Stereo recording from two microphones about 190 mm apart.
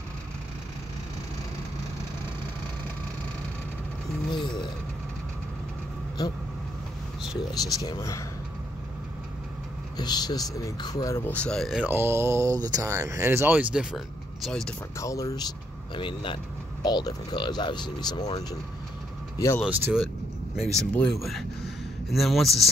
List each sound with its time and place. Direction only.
7.5 s speech: 20° left (ahead or behind)
9.9 s speech: 20° left (ahead or behind)
11.3 s speech: 5° left (ahead or behind)
15.0 s speech: 15° left (ahead or behind)
19.3 s speech: 15° left (ahead or behind)
19.6 s speech: 5° right (ahead or behind)